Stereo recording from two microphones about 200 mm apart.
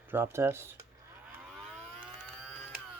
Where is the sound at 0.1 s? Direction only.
10° right (ahead or behind).